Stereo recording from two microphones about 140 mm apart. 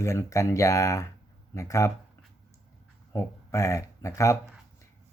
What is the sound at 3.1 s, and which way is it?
Speech, 20° left (ahead or behind).